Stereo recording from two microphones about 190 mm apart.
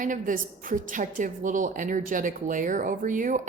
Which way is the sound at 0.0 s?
45° right (ahead or behind).